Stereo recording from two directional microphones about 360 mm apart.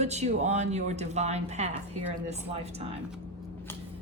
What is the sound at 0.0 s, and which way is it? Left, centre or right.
A woman's voice, centre.